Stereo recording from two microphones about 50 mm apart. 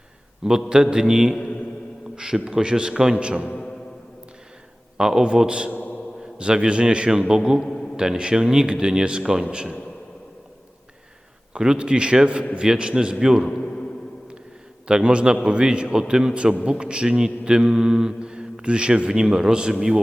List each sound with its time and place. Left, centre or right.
0.7 s mantra: centre
4.9 s a man's voice: centre
5.7 s a sound: left
6.3 s mantra: centre
11.5 s a man's voice: centre
12.5 s mantra: centre
14.8 s a man's voice: centre
16.6 s mantra: centre